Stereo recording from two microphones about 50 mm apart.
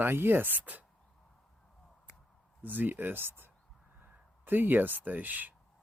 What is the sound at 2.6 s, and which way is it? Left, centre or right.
Speech, right.